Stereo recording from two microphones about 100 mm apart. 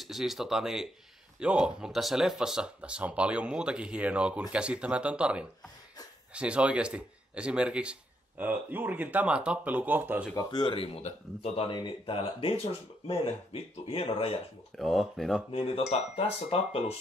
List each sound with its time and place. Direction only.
0.0 s speech: centre (ahead or behind); by 10.2 s 20° right (ahead or behind)
10.5 s speech: 60° left (ahead or behind); by 11.7 s 85° left
11.7 s speech: 60° left (ahead or behind)
14.8 s speech: centre (ahead or behind)
15.5 s speech: 75° left (ahead or behind)